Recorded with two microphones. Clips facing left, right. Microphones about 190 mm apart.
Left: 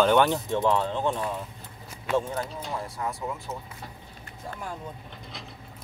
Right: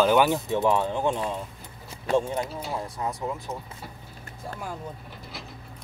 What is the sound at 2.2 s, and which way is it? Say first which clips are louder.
Speech: right 3 dB; 15° right (ahead or behind).